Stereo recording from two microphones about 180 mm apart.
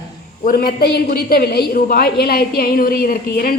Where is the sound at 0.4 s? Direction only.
55° left (ahead or behind).